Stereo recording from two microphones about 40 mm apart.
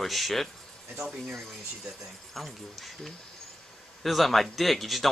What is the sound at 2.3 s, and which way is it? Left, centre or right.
Speech, centre.